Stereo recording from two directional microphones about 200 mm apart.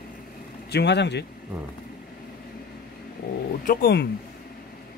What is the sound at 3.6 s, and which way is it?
Speech, 50° left (ahead or behind).